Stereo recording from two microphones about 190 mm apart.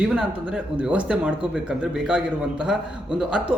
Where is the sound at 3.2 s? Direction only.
5° right (ahead or behind).